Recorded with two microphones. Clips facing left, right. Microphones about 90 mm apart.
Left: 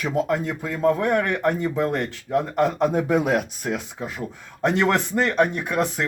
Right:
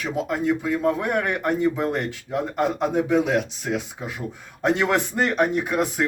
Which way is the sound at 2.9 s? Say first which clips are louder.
Even; 50° left (ahead or behind).